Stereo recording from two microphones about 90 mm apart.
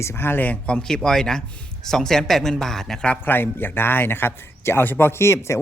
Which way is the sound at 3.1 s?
20° left (ahead or behind).